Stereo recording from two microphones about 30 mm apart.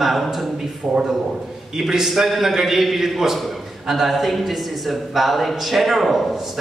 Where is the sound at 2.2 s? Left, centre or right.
Centre.